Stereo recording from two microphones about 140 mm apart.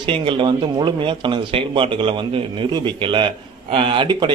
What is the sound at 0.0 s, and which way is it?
A man's voice, 40° right (ahead or behind).